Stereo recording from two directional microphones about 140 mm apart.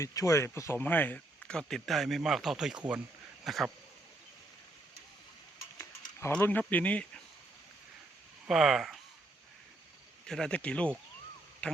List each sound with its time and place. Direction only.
0.0 s speech: 25° left (ahead or behind); by 3.7 s centre (ahead or behind)
5.7 s livestock: 20° left (ahead or behind)
6.3 s speech: 10° left (ahead or behind)
8.4 s speech: centre (ahead or behind)
10.2 s speech: 5° left (ahead or behind)